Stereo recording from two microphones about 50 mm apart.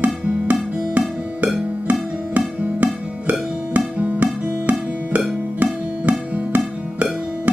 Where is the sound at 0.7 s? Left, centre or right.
Right.